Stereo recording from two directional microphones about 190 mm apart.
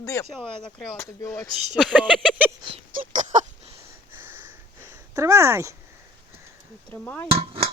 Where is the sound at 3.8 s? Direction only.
10° right (ahead or behind).